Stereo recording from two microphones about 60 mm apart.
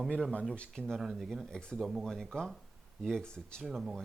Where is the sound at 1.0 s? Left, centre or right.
Centre.